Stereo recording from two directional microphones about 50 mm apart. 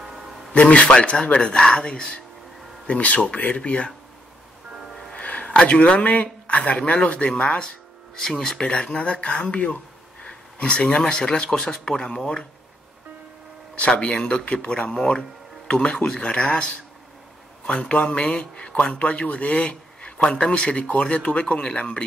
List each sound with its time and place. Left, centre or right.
0.5 s speech: left
2.9 s speech: left
5.1 s a sound: left
5.6 s speech: left
8.2 s speech: centre
8.5 s speech: left
13.7 s speech: left
17.8 s speech: left